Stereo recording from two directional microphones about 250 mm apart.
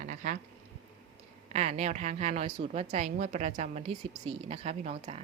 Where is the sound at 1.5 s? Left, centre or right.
Right.